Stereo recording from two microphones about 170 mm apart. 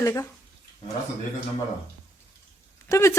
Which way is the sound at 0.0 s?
20° left (ahead or behind).